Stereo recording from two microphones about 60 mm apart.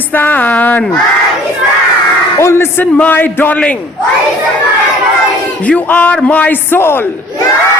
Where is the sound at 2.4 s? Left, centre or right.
Left.